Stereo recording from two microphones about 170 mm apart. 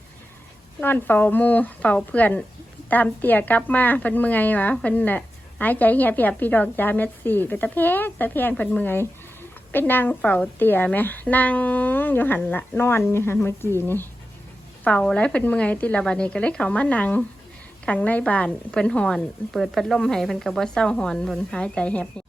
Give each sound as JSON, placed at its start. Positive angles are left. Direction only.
{"t": 0.8, "sound": "a woman's voice", "side_deg": 10}